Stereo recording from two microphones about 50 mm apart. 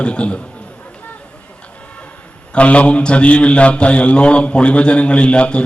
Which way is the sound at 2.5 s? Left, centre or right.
Left.